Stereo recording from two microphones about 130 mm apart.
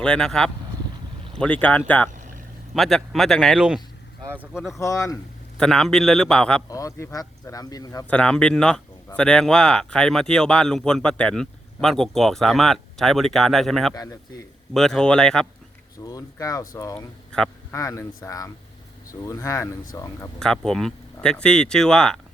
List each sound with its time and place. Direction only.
0.0 s speech: 5° left (ahead or behind); by 4.6 s 10° right (ahead or behind)
4.8 s speech: 25° left (ahead or behind)
5.5 s speech: 5° left (ahead or behind)
6.7 s speech: 25° left (ahead or behind)
8.1 s speech: 10° left (ahead or behind)
13.9 s speech: 25° left (ahead or behind)
14.7 s speech: 5° left (ahead or behind)
16.0 s speech: 25° left (ahead or behind)
20.4 s speech: 5° left (ahead or behind)